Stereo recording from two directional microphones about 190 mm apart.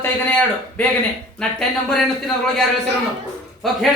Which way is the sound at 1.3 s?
5° left (ahead or behind).